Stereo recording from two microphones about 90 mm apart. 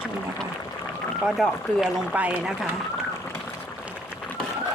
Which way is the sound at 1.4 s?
5° left (ahead or behind).